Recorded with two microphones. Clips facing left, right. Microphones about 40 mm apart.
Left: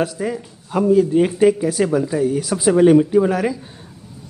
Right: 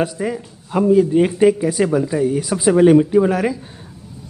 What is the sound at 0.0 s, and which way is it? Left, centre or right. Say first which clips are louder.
A man's voice: right 1 dB; centre.